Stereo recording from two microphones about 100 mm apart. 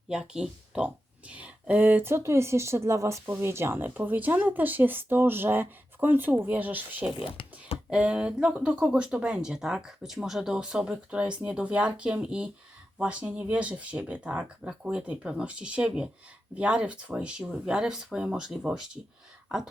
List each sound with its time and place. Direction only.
0.1 s speech: 10° right (ahead or behind)
7.2 s a sound: 60° left (ahead or behind)
7.9 s speech: 10° right (ahead or behind)